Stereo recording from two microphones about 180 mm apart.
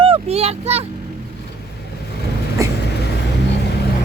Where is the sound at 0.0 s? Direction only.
35° right (ahead or behind).